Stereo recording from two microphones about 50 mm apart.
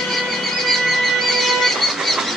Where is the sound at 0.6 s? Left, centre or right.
Centre.